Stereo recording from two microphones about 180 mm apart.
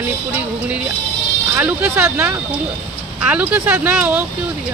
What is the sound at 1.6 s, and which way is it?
Speech, 10° right (ahead or behind).